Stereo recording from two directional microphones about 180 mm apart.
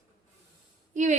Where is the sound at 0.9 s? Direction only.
40° right (ahead or behind).